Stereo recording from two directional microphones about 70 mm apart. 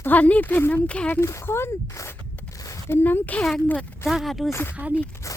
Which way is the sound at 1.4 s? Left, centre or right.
Left.